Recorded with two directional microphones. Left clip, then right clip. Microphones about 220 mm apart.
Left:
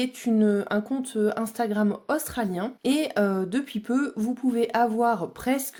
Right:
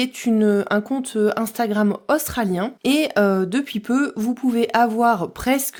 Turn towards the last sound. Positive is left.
turn(degrees=-30)  # may be behind; listen again after turning